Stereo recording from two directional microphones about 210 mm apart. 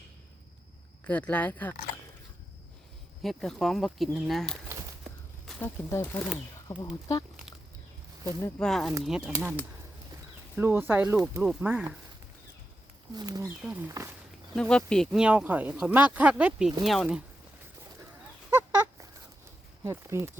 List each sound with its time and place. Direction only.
1.0 s speech: 5° left (ahead or behind)
3.2 s speech: centre (ahead or behind)
5.5 s speech: 10° left (ahead or behind)
8.4 s speech: 10° left (ahead or behind); by 11.9 s 10° right (ahead or behind)
13.1 s speech: 15° right (ahead or behind)
13.6 s speech: 5° right (ahead or behind)
14.5 s speech: 5° left (ahead or behind)
19.8 s speech: 15° right (ahead or behind)